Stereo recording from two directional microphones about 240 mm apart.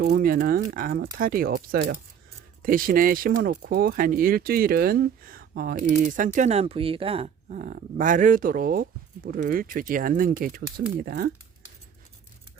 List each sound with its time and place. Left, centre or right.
0.0 s speech: right